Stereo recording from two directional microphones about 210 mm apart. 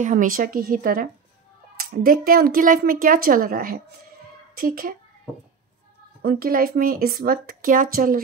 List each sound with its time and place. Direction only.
0.0 s a woman's voice: 40° right (ahead or behind)
6.2 s a woman's voice: 45° right (ahead or behind)